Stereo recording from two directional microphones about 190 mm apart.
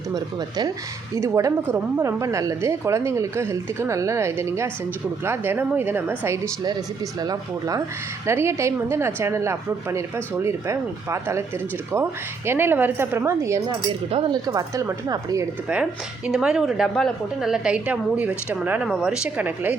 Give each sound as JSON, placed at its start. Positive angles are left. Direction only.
{"t": 0.1, "sound": "a woman's voice", "side_deg": -20}
{"t": 12.5, "sound": "a woman's voice", "side_deg": -10}
{"t": 13.7, "sound": "speech", "side_deg": -25}
{"t": 15.7, "sound": "a woman's voice", "side_deg": -5}